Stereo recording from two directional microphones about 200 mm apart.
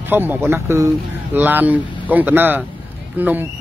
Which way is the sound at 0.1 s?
10° right (ahead or behind).